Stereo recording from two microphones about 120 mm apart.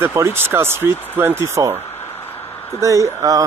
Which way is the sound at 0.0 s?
20° right (ahead or behind).